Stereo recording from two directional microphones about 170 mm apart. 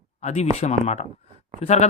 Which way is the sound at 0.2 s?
40° left (ahead or behind).